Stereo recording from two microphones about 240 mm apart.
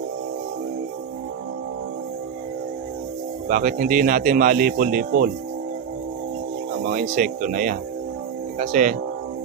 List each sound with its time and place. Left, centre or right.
3.5 s speech: right
6.9 s speech: right